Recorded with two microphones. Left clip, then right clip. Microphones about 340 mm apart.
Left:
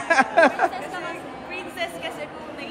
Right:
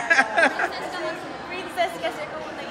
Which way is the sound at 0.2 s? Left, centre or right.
Centre.